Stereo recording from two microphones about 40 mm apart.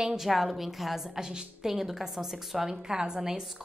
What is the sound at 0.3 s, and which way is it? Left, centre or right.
A woman's voice, centre.